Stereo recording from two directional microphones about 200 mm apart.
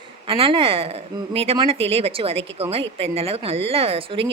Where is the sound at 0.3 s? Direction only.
25° right (ahead or behind).